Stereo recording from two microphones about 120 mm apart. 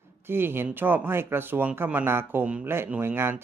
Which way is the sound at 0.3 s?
20° right (ahead or behind).